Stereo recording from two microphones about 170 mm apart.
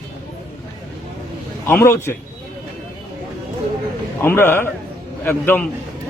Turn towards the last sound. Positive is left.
turn(degrees=10)  # may be behind; listen again after turning